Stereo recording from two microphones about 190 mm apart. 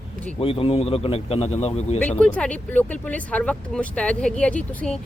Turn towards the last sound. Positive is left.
turn(degrees=5)  # may be behind; listen again after turning